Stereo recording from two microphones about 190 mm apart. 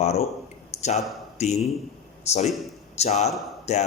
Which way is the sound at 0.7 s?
35° left (ahead or behind).